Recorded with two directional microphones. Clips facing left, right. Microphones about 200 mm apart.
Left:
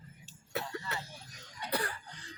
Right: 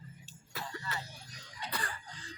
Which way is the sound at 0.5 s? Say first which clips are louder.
Left 4 dB; 60° left (ahead or behind).